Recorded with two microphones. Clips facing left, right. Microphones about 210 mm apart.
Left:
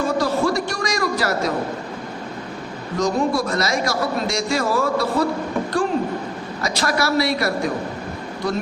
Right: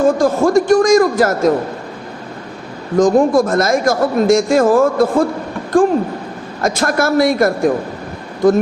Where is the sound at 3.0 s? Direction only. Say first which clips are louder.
Right 9 dB; 50° right (ahead or behind).